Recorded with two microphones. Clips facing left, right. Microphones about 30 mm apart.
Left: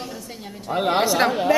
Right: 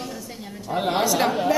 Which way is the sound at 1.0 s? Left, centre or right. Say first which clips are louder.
Left 1 dB; left.